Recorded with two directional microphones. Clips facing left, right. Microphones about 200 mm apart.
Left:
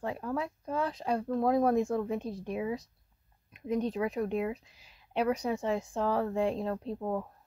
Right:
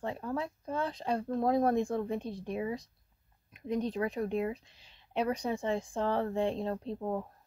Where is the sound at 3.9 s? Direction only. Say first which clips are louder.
Left 1 dB; 30° right (ahead or behind).